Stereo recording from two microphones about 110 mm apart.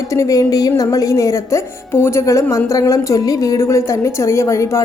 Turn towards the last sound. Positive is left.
turn(degrees=25)  # may be behind; listen again after turning